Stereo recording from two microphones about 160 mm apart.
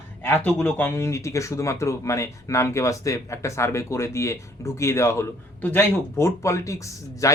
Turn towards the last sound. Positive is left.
turn(degrees=20)  # may be behind; listen again after turning